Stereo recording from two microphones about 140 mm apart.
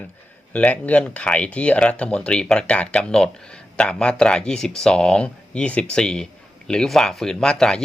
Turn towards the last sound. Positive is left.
turn(degrees=5)  # may be behind; listen again after turning